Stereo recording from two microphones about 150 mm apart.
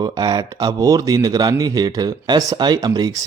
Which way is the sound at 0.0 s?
25° right (ahead or behind).